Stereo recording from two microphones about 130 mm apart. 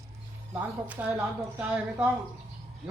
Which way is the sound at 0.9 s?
10° right (ahead or behind).